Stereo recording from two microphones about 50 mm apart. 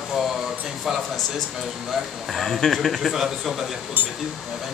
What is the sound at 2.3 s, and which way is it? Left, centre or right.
Speech, centre.